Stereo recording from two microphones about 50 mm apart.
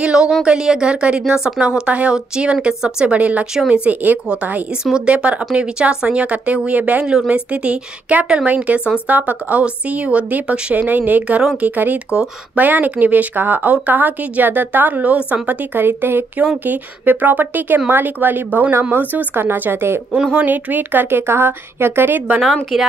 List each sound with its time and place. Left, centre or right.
0.0 s a sound: centre
0.4 s a woman's voice: centre
4.9 s a woman's voice: right
20.1 s a woman's voice: centre
20.4 s a woman's voice: right
22.4 s a woman's voice: centre